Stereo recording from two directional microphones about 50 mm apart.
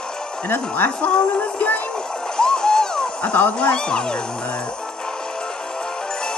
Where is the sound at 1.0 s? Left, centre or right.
Left.